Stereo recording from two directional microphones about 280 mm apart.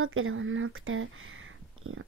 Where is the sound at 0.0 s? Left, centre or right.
Right.